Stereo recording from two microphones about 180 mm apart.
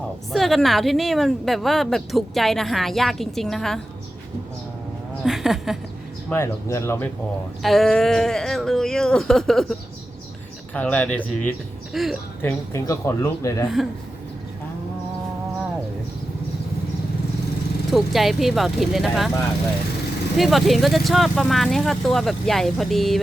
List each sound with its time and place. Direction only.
0.3 s a woman's voice: centre (ahead or behind)
5.2 s a woman's voice: centre (ahead or behind)
6.3 s speech: 15° left (ahead or behind)
7.6 s a woman's voice: centre (ahead or behind)
10.8 s a woman's voice: 10° left (ahead or behind)
12.4 s speech: 15° left (ahead or behind)
17.9 s a woman's voice: centre (ahead or behind)
20.3 s a woman's voice: centre (ahead or behind)